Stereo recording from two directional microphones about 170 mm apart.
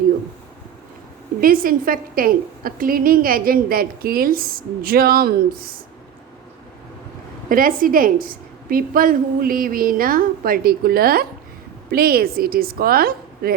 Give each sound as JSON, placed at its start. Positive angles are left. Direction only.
{"t": 1.4, "sound": "a woman's voice", "side_deg": -55}
{"t": 7.5, "sound": "a woman's voice", "side_deg": -55}